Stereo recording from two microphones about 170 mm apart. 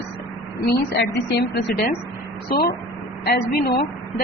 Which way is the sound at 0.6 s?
70° left (ahead or behind).